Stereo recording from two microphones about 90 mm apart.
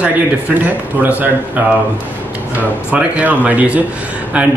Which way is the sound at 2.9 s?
15° right (ahead or behind).